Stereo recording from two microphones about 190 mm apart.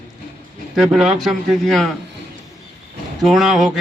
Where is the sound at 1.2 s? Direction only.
Centre (ahead or behind).